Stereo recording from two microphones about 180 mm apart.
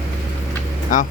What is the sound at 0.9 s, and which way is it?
Speech, 45° left (ahead or behind).